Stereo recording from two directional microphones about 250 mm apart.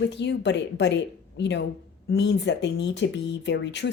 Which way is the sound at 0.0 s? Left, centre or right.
Left.